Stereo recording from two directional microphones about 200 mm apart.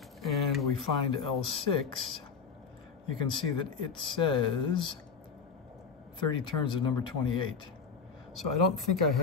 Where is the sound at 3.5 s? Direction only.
25° left (ahead or behind).